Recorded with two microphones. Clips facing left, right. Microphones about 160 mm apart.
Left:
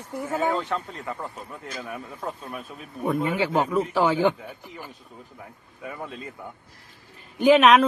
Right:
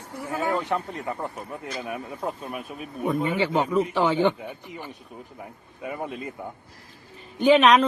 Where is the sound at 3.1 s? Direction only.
Centre (ahead or behind).